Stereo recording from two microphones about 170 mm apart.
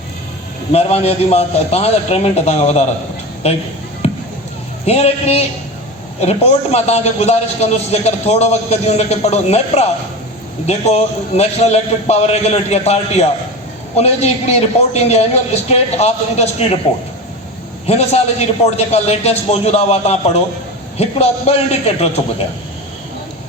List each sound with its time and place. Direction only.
0.7 s a man's voice: 35° left (ahead or behind)
4.0 s basketball bounce: 40° left (ahead or behind)
4.9 s a man's voice: 40° left (ahead or behind)
17.8 s a man's voice: 40° left (ahead or behind)